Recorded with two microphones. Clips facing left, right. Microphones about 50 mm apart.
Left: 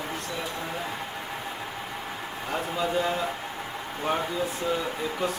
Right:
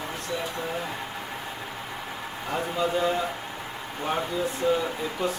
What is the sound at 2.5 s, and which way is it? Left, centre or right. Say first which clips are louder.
Speech: right 1 dB; centre.